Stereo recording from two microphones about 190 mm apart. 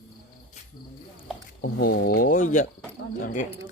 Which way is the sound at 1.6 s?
55° left (ahead or behind).